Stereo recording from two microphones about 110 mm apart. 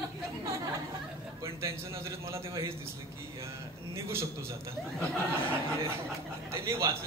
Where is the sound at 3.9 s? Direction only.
25° right (ahead or behind).